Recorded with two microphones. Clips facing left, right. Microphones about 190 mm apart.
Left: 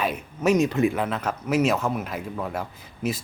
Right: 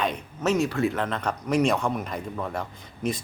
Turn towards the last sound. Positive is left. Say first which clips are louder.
# left 1 dB
turn(degrees=5)  # may be behind; listen again after turning